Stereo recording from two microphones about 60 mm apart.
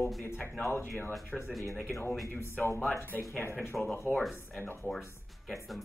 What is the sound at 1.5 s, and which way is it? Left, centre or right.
Speech, centre.